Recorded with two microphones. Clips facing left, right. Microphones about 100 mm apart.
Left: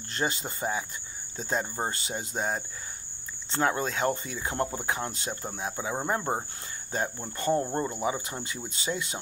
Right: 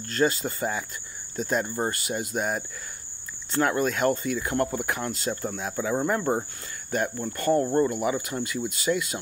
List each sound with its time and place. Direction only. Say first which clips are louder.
0.1 s speech: right 7 dB; 20° left (ahead or behind)